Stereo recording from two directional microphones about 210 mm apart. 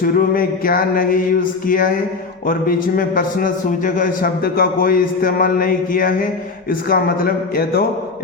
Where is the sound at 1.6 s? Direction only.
40° left (ahead or behind).